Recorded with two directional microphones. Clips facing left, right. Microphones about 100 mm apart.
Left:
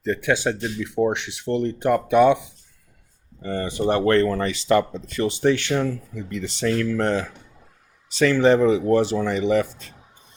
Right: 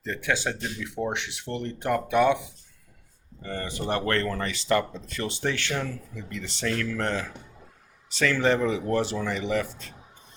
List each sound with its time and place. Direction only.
0.0 s speech: 20° left (ahead or behind)
3.4 s speech: 20° left (ahead or behind)
8.2 s speech: 20° left (ahead or behind)